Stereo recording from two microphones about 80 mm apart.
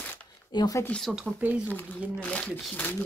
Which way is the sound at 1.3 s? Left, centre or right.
Centre.